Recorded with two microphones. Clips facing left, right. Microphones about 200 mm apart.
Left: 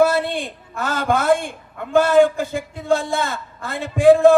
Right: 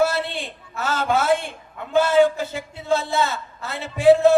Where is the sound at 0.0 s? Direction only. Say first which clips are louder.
Left 4 dB; 55° left (ahead or behind).